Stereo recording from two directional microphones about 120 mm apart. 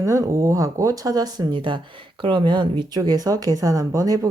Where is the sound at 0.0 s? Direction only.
25° right (ahead or behind).